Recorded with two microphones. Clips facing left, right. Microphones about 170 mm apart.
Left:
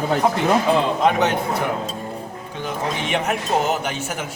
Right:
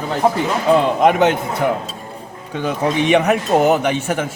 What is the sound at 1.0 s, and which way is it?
Speech, 50° right (ahead or behind).